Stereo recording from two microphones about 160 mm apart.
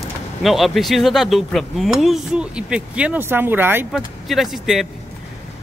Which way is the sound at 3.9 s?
Centre (ahead or behind).